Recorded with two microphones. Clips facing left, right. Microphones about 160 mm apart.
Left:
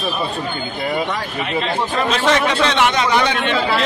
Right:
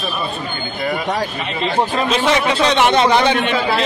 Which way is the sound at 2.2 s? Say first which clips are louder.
Even; 15° right (ahead or behind).